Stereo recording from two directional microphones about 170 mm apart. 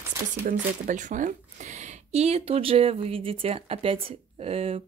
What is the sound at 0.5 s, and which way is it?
Speech, 50° right (ahead or behind).